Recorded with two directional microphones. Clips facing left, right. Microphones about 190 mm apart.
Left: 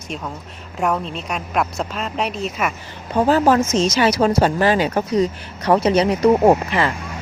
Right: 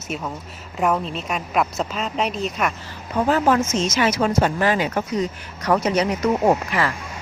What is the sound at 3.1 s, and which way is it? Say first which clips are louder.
Speech: left 3 dB; 35° left (ahead or behind).